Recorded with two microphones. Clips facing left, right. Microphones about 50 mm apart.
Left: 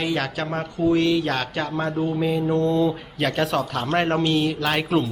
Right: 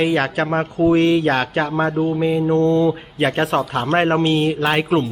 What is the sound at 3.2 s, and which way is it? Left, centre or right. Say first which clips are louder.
A man's voice: right 4 dB; right.